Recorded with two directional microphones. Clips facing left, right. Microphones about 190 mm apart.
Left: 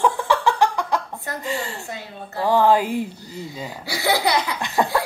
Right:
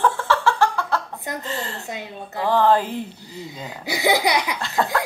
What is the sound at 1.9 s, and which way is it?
Speech, 20° right (ahead or behind).